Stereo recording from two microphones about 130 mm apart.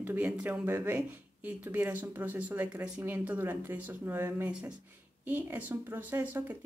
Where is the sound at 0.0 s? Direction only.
10° right (ahead or behind).